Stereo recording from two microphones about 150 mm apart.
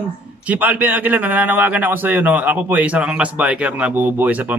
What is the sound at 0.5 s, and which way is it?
A man's voice, 10° right (ahead or behind).